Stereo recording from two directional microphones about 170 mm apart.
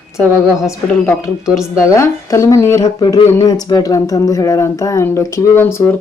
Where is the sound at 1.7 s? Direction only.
15° left (ahead or behind).